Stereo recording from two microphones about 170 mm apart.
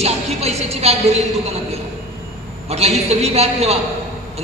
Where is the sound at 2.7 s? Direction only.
40° right (ahead or behind).